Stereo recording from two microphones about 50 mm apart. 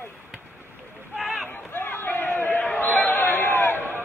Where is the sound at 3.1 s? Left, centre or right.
Left.